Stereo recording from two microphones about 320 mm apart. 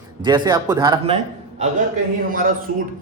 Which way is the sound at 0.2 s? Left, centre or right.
Centre.